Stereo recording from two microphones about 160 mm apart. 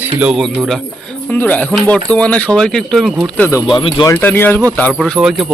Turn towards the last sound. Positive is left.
turn(degrees=0)  # may be behind; listen again after turning